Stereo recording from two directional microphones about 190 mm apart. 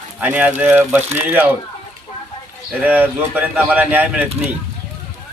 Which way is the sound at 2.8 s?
10° right (ahead or behind).